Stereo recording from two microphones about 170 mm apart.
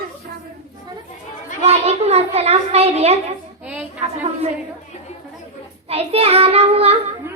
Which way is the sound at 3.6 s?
5° right (ahead or behind).